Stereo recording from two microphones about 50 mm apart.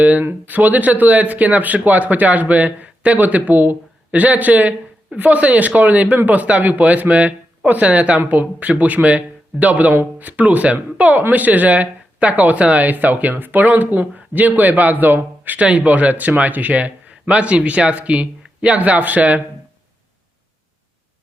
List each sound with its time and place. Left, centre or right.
0.0 s a man's voice: right
15.6 s a man's voice: right